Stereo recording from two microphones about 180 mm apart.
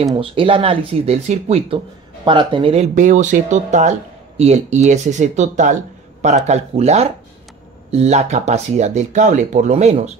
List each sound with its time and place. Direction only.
0.1 s speech: 30° right (ahead or behind)